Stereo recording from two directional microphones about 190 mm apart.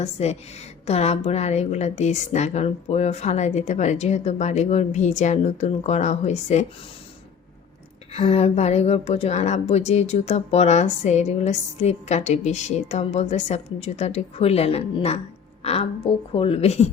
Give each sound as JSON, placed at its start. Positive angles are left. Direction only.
{"t": 0.0, "sound": "a woman's voice", "side_deg": 35}
{"t": 8.1, "sound": "a woman's voice", "side_deg": 35}